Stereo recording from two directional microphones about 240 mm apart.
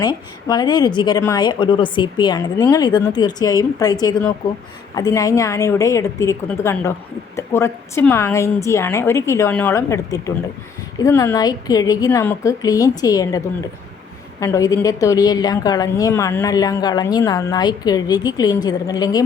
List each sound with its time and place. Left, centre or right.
0.4 s a woman's voice: centre
4.9 s a woman's voice: centre